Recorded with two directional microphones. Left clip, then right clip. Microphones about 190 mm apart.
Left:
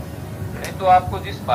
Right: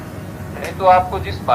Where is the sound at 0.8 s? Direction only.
50° right (ahead or behind).